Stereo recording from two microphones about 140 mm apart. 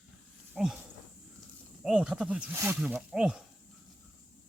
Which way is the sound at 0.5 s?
5° right (ahead or behind).